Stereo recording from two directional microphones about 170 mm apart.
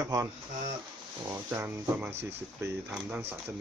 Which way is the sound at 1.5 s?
10° right (ahead or behind).